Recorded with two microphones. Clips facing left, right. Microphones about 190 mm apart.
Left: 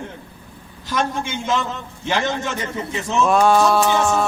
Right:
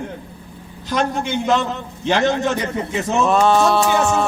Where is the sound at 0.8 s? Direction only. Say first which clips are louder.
Right 3 dB; 20° right (ahead or behind).